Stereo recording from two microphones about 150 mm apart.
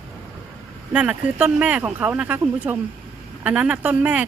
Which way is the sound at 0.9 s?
10° right (ahead or behind).